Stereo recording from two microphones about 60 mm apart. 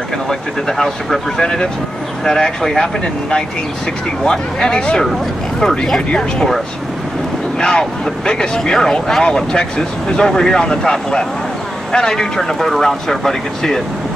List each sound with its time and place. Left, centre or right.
0.3 s speech: centre
7.6 s speech: centre